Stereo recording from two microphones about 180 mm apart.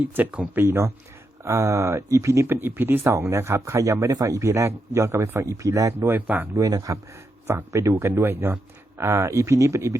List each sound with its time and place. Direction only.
0.0 s speech: 10° right (ahead or behind)